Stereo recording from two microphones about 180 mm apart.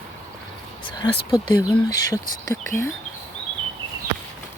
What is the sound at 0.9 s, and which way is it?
Speech, 25° left (ahead or behind).